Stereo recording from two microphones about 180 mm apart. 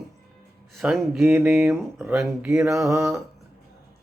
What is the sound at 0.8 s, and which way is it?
Speech, 5° right (ahead or behind).